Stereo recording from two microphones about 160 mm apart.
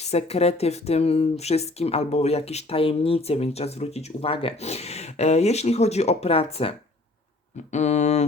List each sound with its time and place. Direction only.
0.0 s speech: 40° left (ahead or behind)
7.5 s mantra: 45° left (ahead or behind)